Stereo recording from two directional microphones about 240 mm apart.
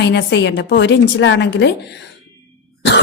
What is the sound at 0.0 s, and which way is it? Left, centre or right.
A woman's voice, left.